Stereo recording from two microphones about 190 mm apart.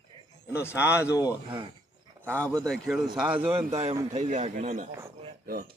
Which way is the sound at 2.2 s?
10° right (ahead or behind).